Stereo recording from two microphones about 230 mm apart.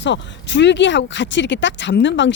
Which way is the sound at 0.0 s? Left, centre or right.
Left.